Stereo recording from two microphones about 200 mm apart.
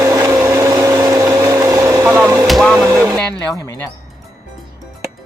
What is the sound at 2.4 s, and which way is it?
Vehicle, centre (ahead or behind).